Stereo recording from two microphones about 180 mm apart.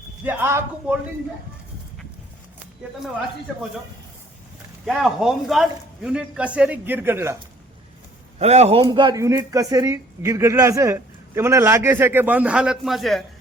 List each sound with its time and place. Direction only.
0.3 s a man's voice: 10° right (ahead or behind)
2.8 s speech: 5° right (ahead or behind)
4.9 s a man's voice: centre (ahead or behind)
8.4 s a man's voice: 35° right (ahead or behind); by 13.2 s centre (ahead or behind)